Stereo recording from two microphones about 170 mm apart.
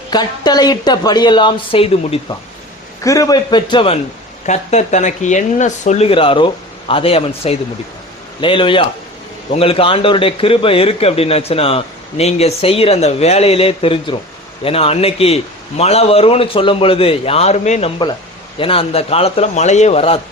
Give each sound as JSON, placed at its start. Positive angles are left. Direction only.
{"t": 0.1, "sound": "speech", "side_deg": 25}
{"t": 3.0, "sound": "speech", "side_deg": 20}
{"t": 4.4, "sound": "a man's voice", "side_deg": 40}